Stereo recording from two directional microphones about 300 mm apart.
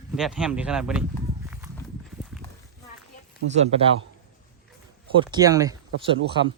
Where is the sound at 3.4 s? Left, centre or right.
Right.